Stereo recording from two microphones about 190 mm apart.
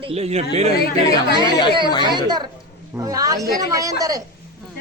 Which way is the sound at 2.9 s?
20° right (ahead or behind).